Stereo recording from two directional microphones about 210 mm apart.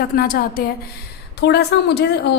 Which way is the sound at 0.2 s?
45° left (ahead or behind).